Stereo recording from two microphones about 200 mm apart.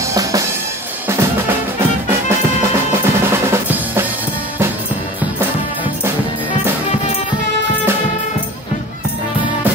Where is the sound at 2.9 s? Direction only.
10° right (ahead or behind).